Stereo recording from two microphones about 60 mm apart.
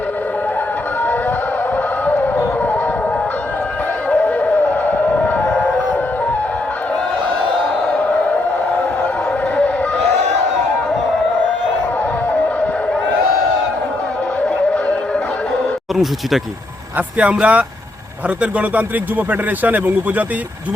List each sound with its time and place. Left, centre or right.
2.0 s music: left
4.1 s music: left
7.9 s a sound: left
17.2 s a man's voice: right